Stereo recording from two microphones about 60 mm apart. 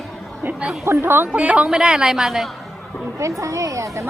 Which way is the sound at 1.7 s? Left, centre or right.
Centre.